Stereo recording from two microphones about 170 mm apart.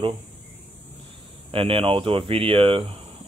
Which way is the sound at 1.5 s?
30° right (ahead or behind).